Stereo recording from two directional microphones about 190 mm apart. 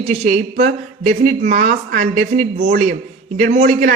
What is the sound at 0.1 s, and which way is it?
A woman's voice, 35° right (ahead or behind).